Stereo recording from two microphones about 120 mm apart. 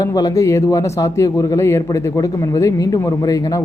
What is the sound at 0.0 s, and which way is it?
Speech, 30° left (ahead or behind).